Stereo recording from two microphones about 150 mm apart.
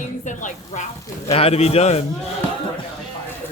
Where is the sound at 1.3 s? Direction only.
40° left (ahead or behind).